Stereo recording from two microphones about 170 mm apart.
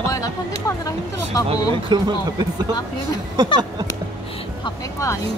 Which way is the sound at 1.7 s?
25° right (ahead or behind).